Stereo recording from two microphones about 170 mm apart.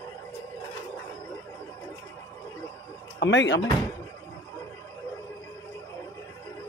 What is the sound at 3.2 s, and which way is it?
Speech, 90° left.